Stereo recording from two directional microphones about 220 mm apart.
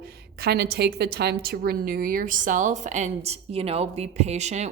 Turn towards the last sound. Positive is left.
turn(degrees=-30)  # may be behind; listen again after turning